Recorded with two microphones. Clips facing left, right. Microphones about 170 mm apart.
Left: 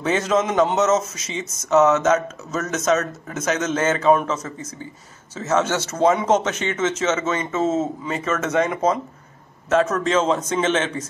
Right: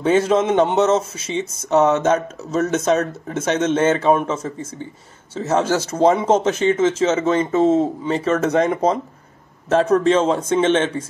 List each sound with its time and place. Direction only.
0.0 s a man's voice: 30° right (ahead or behind)